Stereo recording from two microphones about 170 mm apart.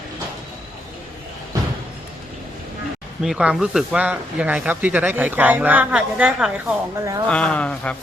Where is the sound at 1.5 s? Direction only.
20° right (ahead or behind).